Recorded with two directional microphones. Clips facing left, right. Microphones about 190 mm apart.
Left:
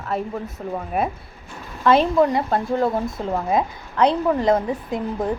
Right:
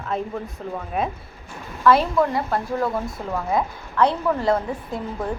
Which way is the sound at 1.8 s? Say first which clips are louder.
Left 2 dB; 20° left (ahead or behind).